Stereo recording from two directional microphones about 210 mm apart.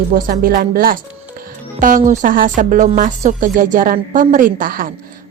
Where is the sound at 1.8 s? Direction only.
40° right (ahead or behind).